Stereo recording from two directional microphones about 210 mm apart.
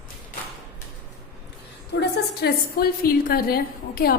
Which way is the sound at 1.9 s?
55° left (ahead or behind).